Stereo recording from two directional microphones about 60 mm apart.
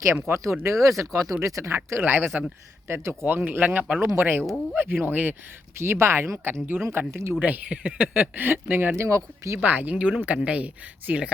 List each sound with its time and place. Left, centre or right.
0.0 s speech: right
0.6 s speech: right
1.7 s speech: right
3.2 s speech: right
4.0 s speech: right
5.8 s speech: right
7.1 s speech: right
7.4 s speech: right
7.9 s speech: right
9.0 s speech: right
9.6 s speech: right